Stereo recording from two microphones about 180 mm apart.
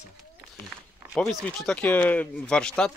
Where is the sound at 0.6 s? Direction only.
Centre (ahead or behind).